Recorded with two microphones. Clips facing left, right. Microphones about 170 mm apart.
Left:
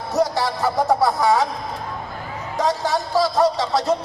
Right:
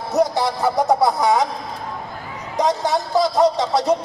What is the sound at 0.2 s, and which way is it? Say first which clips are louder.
Speech: right 2 dB; 20° right (ahead or behind).